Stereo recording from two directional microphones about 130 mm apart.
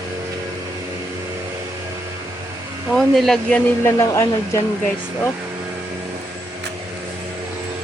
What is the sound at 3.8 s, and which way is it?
Speech, 20° left (ahead or behind).